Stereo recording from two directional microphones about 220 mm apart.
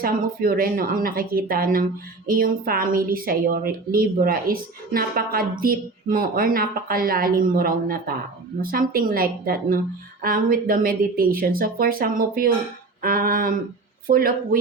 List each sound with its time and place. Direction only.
0.0 s a woman's voice: 40° right (ahead or behind)